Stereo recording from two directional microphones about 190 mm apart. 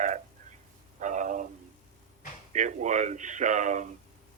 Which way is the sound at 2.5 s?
40° right (ahead or behind).